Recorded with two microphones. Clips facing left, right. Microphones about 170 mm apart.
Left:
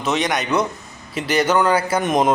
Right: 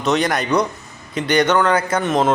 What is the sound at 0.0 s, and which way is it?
A man's voice, centre (ahead or behind).